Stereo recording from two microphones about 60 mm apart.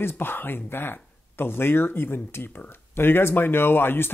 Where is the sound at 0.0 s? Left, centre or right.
Left.